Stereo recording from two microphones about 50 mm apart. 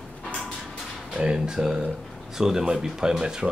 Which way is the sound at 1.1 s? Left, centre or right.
Centre.